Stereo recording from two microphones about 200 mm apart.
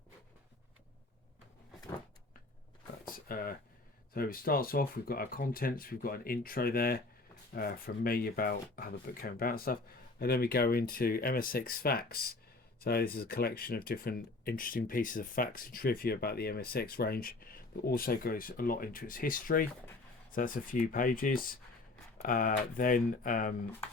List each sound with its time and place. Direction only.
3.2 s speech: 45° left (ahead or behind)